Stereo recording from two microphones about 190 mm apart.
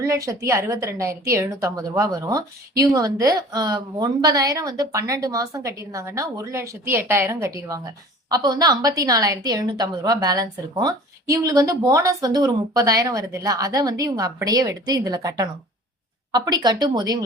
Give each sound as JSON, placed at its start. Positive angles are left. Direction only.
{"t": 0.0, "sound": "a woman's voice", "side_deg": -15}